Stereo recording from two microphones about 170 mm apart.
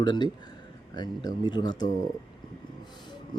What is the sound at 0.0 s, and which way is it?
Speech, 25° left (ahead or behind).